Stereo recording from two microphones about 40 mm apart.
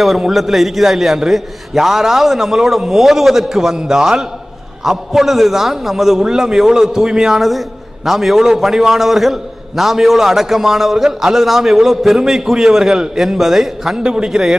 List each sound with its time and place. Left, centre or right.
0.3 s a man's voice: centre
13.9 s a man's voice: centre